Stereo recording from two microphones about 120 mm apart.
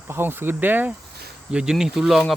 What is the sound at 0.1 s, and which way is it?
Speech, 15° right (ahead or behind).